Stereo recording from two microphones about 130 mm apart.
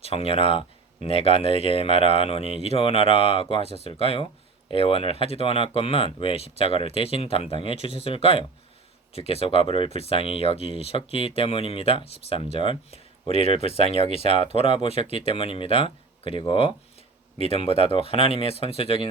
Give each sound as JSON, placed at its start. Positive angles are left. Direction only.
{"t": 0.0, "sound": "speech", "side_deg": 50}